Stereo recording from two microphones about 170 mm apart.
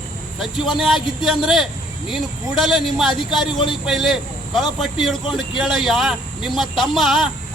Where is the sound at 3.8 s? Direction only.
Centre (ahead or behind).